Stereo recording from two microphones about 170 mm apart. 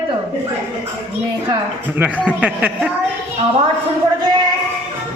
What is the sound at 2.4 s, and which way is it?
Speech, 5° right (ahead or behind).